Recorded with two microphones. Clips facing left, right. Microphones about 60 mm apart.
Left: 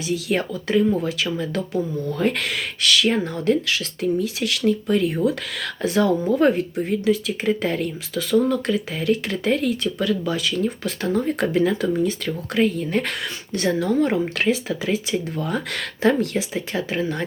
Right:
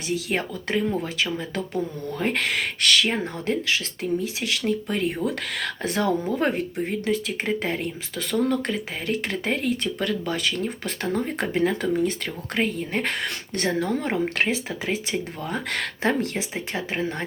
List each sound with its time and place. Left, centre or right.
0.1 s speech: right
3.1 s speech: right